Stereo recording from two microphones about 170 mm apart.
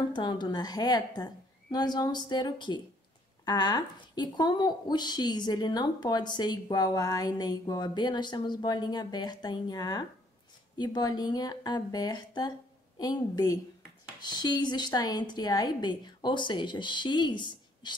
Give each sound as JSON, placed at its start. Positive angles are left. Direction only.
{"t": 0.1, "sound": "speech", "side_deg": 25}